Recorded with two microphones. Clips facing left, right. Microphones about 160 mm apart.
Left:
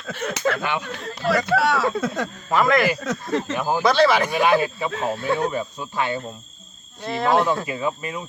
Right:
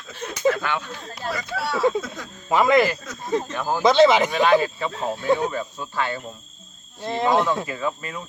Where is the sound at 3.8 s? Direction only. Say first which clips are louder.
Right 3 dB; 20° right (ahead or behind).